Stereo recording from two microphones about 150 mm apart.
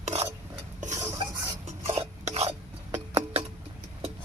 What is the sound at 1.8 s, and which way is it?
Stir, 45° right (ahead or behind).